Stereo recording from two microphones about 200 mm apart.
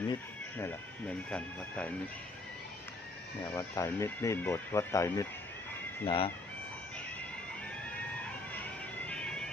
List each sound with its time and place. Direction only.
0.5 s speech: 10° left (ahead or behind)
3.5 s speech: 15° left (ahead or behind)
6.1 s speech: 30° left (ahead or behind)
8.5 s music: 10° left (ahead or behind)